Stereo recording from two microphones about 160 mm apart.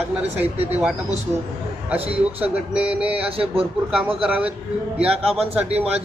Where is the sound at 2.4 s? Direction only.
5° right (ahead or behind).